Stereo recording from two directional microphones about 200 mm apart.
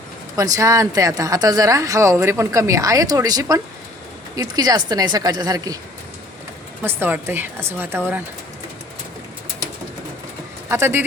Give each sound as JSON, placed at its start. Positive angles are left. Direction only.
{"t": 0.3, "sound": "a woman's voice", "side_deg": -15}
{"t": 6.8, "sound": "a woman's voice", "side_deg": -10}
{"t": 10.7, "sound": "a woman's voice", "side_deg": -10}